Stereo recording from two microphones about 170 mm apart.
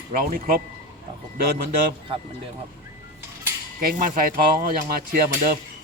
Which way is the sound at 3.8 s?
55° right (ahead or behind).